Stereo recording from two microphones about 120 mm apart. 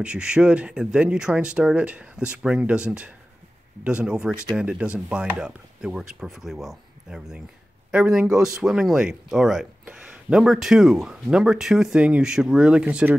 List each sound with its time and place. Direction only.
0.0 s speech: 10° right (ahead or behind)